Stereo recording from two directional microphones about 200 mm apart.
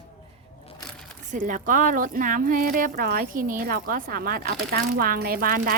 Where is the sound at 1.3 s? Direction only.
40° right (ahead or behind).